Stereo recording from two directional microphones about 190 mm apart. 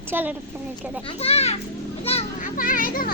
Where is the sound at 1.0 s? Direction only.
30° left (ahead or behind).